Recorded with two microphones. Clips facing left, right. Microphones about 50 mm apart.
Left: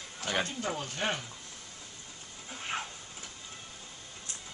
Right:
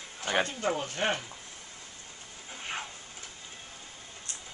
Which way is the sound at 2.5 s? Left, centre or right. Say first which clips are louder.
Left 1 dB; centre.